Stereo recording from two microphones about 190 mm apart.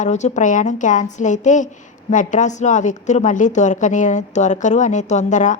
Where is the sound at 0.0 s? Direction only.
40° left (ahead or behind).